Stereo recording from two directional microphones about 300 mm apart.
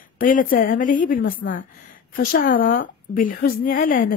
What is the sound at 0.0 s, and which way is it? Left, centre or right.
A woman's voice, left.